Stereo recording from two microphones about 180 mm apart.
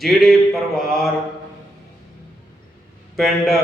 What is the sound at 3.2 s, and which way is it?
Mantra, centre (ahead or behind).